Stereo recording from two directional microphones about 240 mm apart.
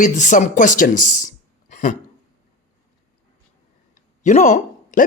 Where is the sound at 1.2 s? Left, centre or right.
Left.